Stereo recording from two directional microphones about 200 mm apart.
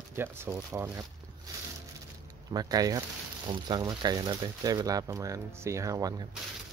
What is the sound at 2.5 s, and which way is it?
Speech, 20° right (ahead or behind).